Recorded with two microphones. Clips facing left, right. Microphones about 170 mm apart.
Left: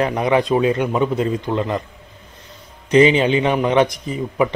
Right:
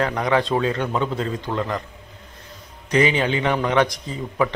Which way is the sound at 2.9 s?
20° left (ahead or behind).